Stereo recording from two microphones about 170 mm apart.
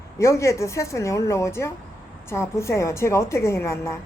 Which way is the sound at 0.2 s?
15° left (ahead or behind).